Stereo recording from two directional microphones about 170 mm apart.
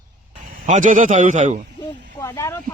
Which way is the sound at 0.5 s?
50° right (ahead or behind).